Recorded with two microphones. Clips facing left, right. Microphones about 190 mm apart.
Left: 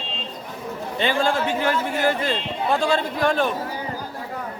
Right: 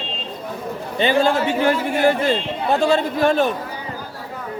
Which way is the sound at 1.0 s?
20° right (ahead or behind).